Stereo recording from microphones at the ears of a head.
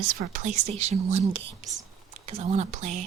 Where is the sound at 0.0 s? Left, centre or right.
Right.